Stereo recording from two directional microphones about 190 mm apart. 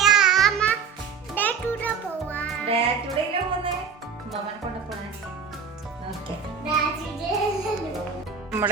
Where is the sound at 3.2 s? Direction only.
25° right (ahead or behind).